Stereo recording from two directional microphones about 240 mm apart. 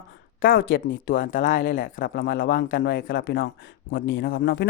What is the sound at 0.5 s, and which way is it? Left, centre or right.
Speech, left.